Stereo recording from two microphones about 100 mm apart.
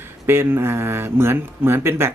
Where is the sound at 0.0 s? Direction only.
25° right (ahead or behind).